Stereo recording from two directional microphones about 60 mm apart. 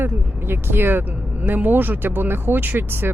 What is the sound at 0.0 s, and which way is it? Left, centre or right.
Speech, right.